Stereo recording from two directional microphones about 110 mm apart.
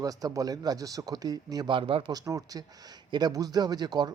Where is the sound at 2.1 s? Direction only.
35° right (ahead or behind).